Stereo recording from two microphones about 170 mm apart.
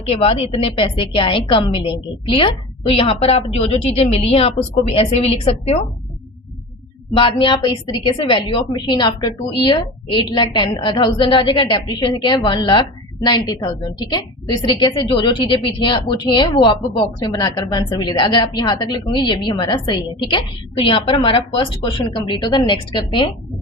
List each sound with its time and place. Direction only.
0.1 s a woman's voice: 35° left (ahead or behind)
7.2 s a woman's voice: 30° left (ahead or behind)